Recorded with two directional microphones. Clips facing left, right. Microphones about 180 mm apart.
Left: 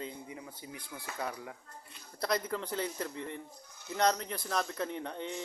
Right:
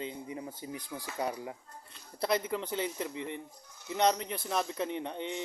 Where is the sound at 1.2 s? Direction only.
25° right (ahead or behind).